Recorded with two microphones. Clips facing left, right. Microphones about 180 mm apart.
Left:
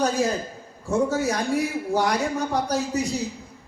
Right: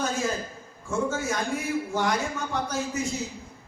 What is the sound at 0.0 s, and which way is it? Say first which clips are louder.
A man's voice: left 5 dB; 35° left (ahead or behind).